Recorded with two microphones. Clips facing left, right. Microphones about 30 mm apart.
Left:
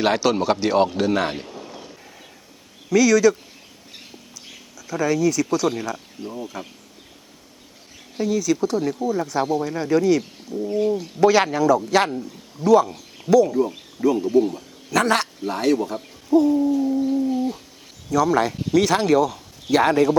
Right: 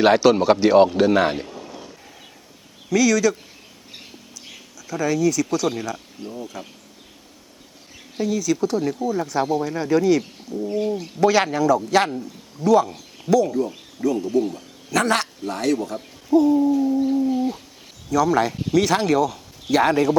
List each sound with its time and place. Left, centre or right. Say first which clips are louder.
0.0 s speech: right 4 dB; centre
2.9 s speech: left 2 dB; centre
4.4 s speech: even; centre
8.1 s speech: left 1 dB; centre